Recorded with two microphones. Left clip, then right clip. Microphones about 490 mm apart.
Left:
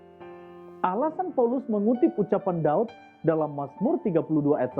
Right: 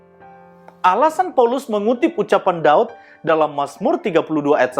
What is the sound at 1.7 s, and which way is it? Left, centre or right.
Speech, centre.